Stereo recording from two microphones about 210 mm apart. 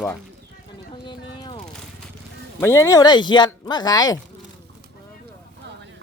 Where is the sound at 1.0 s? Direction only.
20° left (ahead or behind).